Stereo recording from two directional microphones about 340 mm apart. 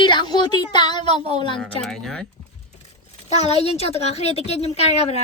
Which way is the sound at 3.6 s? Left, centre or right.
Centre.